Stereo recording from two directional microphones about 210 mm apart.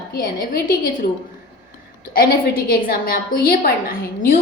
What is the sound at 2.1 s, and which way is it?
A woman's voice, 45° left (ahead or behind).